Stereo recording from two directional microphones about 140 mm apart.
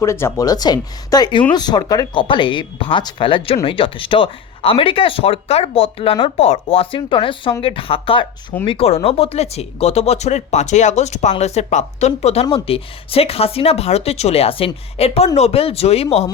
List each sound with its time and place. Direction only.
0.0 s speech: 20° left (ahead or behind); by 16.2 s 45° left (ahead or behind)